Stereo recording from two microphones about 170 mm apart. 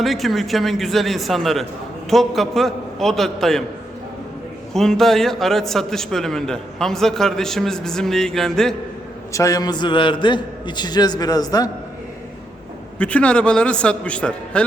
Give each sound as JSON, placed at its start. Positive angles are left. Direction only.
{"t": 0.0, "sound": "a man's voice", "side_deg": 0}
{"t": 4.7, "sound": "a man's voice", "side_deg": 0}
{"t": 9.3, "sound": "a man's voice", "side_deg": 20}
{"t": 13.0, "sound": "a man's voice", "side_deg": 5}